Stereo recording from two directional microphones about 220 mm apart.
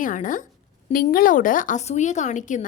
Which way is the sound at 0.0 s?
35° left (ahead or behind).